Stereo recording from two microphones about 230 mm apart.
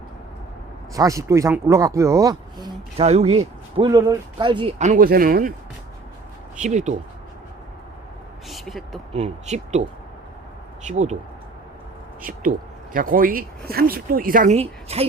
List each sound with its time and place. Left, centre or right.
0.9 s speech: centre
3.0 s speech: right
3.8 s speech: centre
4.8 s speech: right
6.6 s speech: right
8.4 s speech: centre
9.1 s speech: right
10.8 s speech: right
12.2 s speech: right